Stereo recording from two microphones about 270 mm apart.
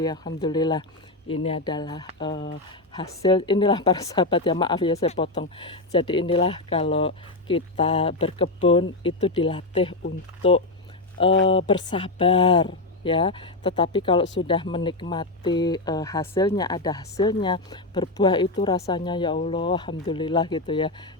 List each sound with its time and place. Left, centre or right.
0.0 s speech: centre
11.4 s speech: centre